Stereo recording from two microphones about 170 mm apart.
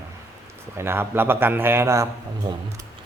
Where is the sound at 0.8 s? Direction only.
15° right (ahead or behind).